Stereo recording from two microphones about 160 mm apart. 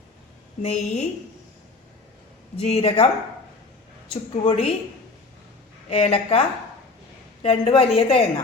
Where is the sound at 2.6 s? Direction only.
40° left (ahead or behind).